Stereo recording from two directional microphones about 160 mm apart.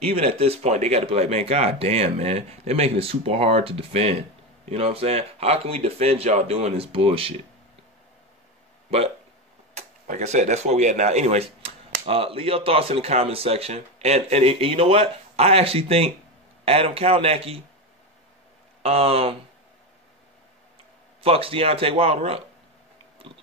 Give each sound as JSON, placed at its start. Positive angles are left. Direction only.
{"t": 0.0, "sound": "speech", "side_deg": -40}
{"t": 9.8, "sound": "speech", "side_deg": -45}
{"t": 18.8, "sound": "speech", "side_deg": -40}
{"t": 21.2, "sound": "speech", "side_deg": -35}